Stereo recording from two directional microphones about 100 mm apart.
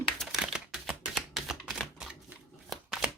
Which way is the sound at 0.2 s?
5° right (ahead or behind).